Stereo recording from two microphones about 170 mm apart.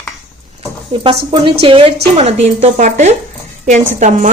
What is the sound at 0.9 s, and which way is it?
A woman's voice, 35° right (ahead or behind).